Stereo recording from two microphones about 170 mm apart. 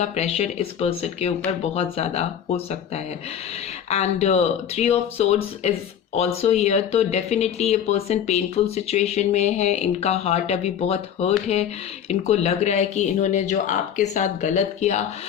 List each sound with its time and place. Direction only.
0.0 s speech: 40° left (ahead or behind)